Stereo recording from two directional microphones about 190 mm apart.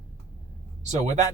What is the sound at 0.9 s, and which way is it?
Speech, 35° right (ahead or behind).